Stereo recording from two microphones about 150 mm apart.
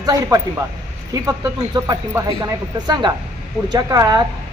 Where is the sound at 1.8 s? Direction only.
25° right (ahead or behind).